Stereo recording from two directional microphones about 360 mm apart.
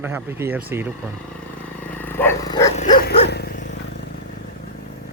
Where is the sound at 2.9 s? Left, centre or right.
Left.